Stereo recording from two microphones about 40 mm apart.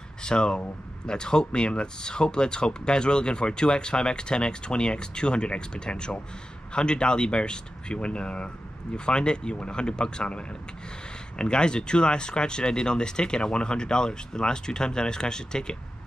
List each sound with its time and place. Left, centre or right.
0.2 s speech: left